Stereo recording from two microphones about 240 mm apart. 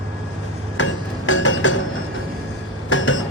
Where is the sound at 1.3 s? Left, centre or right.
Left.